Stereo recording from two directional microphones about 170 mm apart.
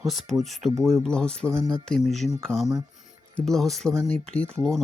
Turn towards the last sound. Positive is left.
turn(degrees=0)  # may be behind; listen again after turning